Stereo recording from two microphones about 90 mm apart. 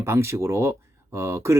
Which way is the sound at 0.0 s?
30° right (ahead or behind).